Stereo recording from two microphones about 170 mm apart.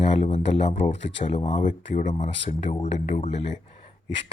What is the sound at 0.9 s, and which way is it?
Speech, 90° left.